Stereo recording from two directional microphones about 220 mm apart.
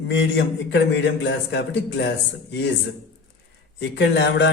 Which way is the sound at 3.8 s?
50° left (ahead or behind).